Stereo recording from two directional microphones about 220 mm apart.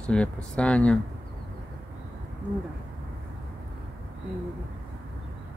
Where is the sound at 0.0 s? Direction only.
5° left (ahead or behind).